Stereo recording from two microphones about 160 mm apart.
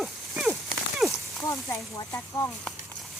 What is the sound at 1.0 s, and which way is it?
Horse, centre (ahead or behind).